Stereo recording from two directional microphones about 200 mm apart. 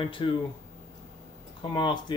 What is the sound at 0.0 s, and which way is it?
Speech, 25° left (ahead or behind).